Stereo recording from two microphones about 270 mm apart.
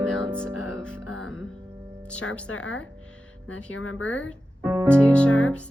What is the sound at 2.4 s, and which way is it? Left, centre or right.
Speech, left.